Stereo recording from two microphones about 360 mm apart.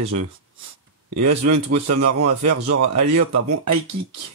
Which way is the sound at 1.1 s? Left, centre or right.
Right.